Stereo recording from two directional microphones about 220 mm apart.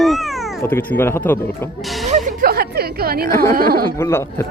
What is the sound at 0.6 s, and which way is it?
Speech, 10° left (ahead or behind).